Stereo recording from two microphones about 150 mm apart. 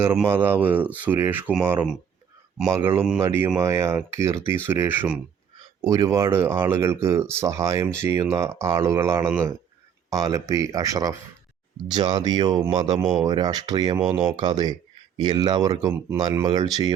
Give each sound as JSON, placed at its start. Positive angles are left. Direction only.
{"t": 0.0, "sound": "speech", "side_deg": -15}
{"t": 5.8, "sound": "speech", "side_deg": -25}
{"t": 13.0, "sound": "speech", "side_deg": -5}
{"t": 13.2, "sound": "speech", "side_deg": -25}